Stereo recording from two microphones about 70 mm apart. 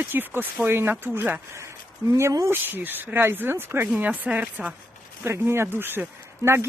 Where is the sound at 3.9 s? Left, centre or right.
Centre.